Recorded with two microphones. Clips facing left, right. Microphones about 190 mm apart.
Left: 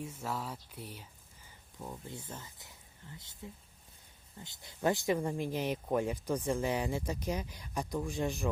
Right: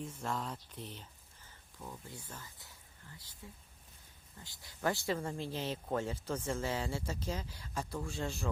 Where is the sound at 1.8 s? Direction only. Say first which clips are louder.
Left 4 dB; 25° left (ahead or behind).